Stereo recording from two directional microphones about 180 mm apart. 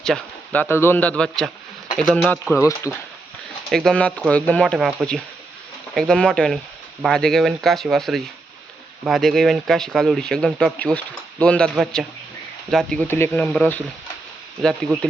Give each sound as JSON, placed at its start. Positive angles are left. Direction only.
{"t": 0.0, "sound": "a man's voice", "side_deg": 5}
{"t": 2.6, "sound": "a man's voice", "side_deg": 15}
{"t": 3.7, "sound": "a man's voice", "side_deg": 0}